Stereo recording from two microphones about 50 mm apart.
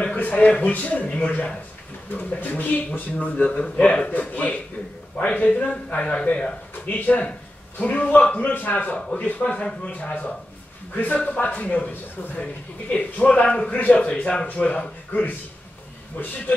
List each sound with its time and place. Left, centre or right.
0.0 s a sound: left
0.5 s a man's voice: left
12.9 s a man's voice: left